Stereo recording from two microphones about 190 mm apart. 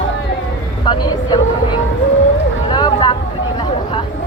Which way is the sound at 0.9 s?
25° left (ahead or behind).